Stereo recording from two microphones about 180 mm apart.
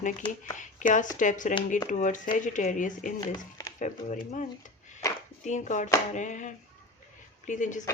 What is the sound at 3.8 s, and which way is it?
Speech, 45° left (ahead or behind).